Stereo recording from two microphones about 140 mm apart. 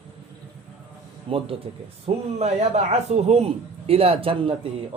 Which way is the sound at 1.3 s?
40° right (ahead or behind).